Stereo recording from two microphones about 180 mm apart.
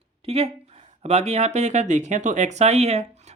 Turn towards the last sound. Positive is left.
turn(degrees=-35)  # may be behind; listen again after turning